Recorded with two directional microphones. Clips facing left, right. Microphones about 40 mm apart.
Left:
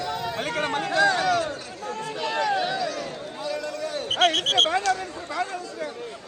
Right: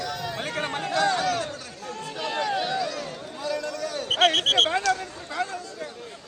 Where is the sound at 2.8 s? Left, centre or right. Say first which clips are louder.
Left 2 dB; left.